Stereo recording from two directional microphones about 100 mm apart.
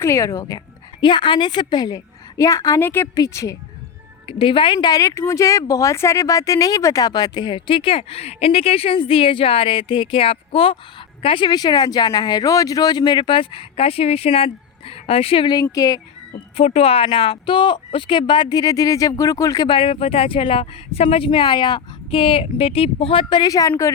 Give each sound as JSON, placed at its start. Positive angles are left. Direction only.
{"t": 0.0, "sound": "speech", "side_deg": 30}
{"t": 1.0, "sound": "speech", "side_deg": 55}
{"t": 2.8, "sound": "a woman's voice", "side_deg": 20}
{"t": 3.2, "sound": "speech", "side_deg": 30}
{"t": 4.3, "sound": "speech", "side_deg": 60}
{"t": 4.9, "sound": "a woman's voice", "side_deg": 30}
{"t": 15.7, "sound": "speech", "side_deg": 35}
{"t": 16.6, "sound": "speech", "side_deg": 85}
{"t": 19.6, "sound": "speech", "side_deg": 65}
{"t": 23.4, "sound": "speech", "side_deg": 35}